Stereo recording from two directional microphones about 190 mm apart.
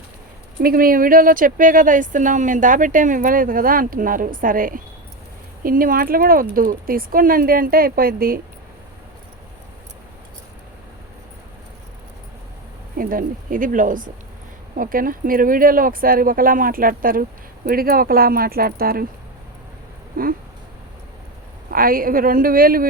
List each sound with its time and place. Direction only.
0.6 s speech: 50° right (ahead or behind)
13.0 s speech: 45° right (ahead or behind)
20.1 s speech: 50° right (ahead or behind)
21.7 s speech: 50° right (ahead or behind)